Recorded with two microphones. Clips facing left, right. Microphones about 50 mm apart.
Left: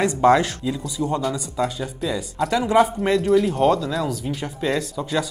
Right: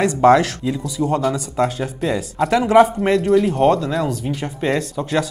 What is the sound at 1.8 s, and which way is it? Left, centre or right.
Speech, right.